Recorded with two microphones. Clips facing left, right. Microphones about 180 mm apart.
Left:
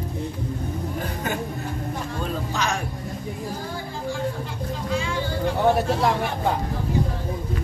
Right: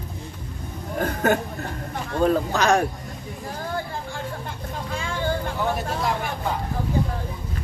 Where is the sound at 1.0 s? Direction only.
60° right (ahead or behind).